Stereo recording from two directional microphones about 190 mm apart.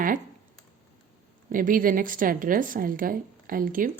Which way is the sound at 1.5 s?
45° right (ahead or behind).